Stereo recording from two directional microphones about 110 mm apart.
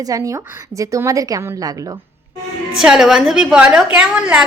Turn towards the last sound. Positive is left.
turn(degrees=-10)  # may be behind; listen again after turning